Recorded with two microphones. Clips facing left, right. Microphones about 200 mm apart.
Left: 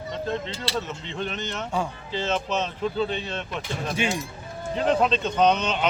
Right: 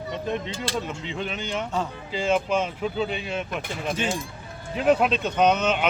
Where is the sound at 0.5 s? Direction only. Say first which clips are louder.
Right 1 dB; 50° right (ahead or behind).